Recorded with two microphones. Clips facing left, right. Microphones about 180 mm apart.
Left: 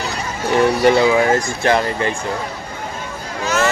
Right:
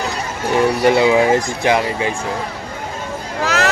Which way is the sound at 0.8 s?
5° right (ahead or behind).